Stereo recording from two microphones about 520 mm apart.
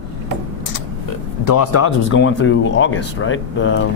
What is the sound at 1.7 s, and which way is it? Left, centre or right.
Speech, left.